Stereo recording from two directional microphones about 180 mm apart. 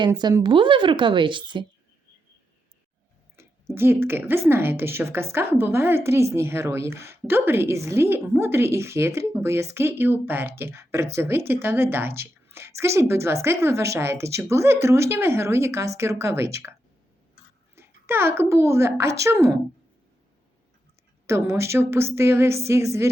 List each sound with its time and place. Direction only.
0.0 s speech: 25° right (ahead or behind)
3.3 s a woman's voice: 15° right (ahead or behind)
17.7 s a woman's voice: 15° right (ahead or behind)
21.2 s a woman's voice: 15° right (ahead or behind)